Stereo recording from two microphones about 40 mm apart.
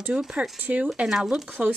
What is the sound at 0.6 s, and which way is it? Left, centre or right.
Speech, right.